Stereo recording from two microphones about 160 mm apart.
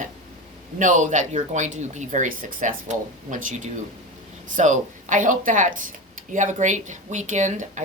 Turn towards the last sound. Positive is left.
turn(degrees=-50)  # may be behind; listen again after turning